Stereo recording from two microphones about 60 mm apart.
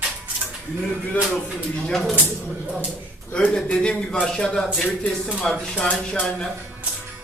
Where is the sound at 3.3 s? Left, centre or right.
Centre.